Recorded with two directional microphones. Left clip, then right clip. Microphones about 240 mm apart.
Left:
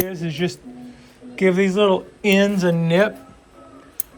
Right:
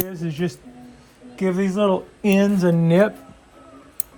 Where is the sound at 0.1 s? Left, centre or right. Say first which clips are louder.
Left 2 dB; right.